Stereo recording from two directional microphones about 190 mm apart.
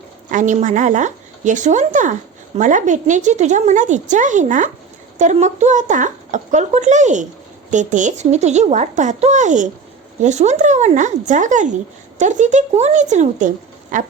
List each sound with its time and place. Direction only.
0.3 s a woman's voice: 40° right (ahead or behind)